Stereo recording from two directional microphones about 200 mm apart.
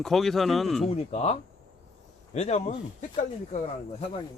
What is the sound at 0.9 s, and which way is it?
Speech, 30° left (ahead or behind).